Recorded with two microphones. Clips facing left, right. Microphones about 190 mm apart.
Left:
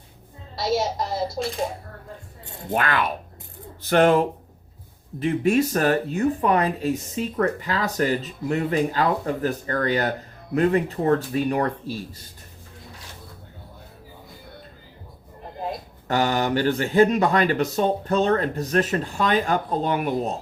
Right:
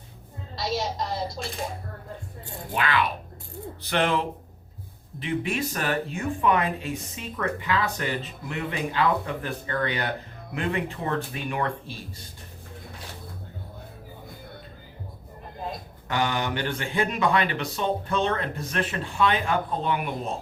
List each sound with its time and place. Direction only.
0.6 s a woman's voice: 25° left (ahead or behind)
2.7 s speech: 45° left (ahead or behind)
16.0 s speech: 40° left (ahead or behind)